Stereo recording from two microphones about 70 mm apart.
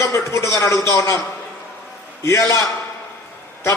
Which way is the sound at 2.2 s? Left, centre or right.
Left.